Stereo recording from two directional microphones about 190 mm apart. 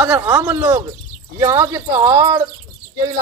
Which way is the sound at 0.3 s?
15° right (ahead or behind).